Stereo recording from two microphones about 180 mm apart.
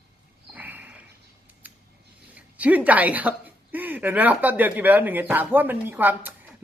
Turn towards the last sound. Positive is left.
turn(degrees=-10)  # may be behind; listen again after turning